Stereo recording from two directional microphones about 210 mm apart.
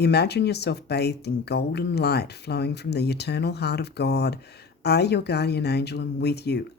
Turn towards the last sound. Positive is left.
turn(degrees=50)  # may be behind; listen again after turning